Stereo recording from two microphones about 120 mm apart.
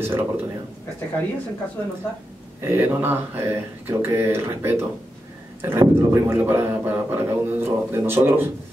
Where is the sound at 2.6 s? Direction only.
20° right (ahead or behind).